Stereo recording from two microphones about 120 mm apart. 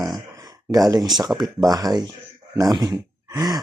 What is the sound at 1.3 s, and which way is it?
Speech, 10° right (ahead or behind).